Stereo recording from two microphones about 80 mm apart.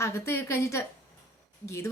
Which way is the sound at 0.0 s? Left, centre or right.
Left.